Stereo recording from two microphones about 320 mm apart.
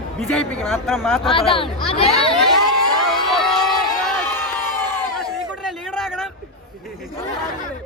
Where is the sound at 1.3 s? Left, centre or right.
Centre.